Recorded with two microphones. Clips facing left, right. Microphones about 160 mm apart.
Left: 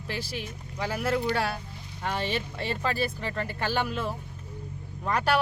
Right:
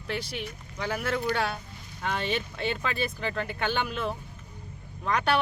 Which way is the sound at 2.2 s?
Centre (ahead or behind).